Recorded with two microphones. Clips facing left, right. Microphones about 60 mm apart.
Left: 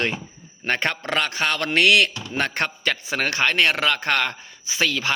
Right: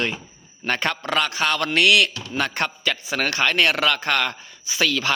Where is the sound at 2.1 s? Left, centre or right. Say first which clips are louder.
Even; left.